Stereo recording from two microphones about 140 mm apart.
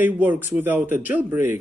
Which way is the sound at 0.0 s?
15° right (ahead or behind).